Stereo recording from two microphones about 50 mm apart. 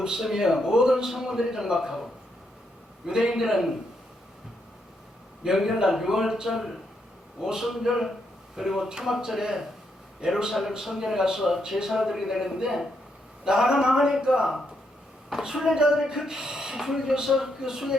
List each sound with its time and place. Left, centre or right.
0.0 s speech: centre
3.1 s speech: centre
5.4 s a man's voice: centre